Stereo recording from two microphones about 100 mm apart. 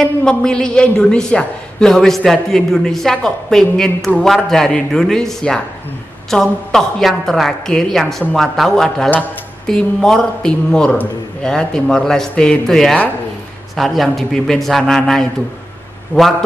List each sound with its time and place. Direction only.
0.0 s a woman's voice: 10° left (ahead or behind)
16.1 s speech: 15° left (ahead or behind)